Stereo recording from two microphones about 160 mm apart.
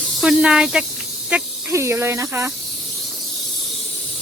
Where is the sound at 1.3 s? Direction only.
15° right (ahead or behind).